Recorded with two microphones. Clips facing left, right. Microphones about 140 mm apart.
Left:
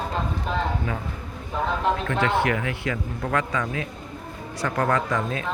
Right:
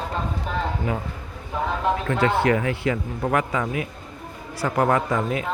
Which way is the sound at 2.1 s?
25° right (ahead or behind).